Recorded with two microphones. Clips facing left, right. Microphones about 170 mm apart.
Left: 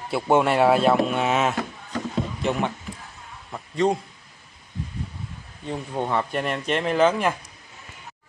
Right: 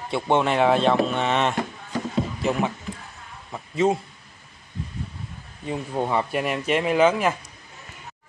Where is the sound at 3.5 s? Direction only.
5° right (ahead or behind).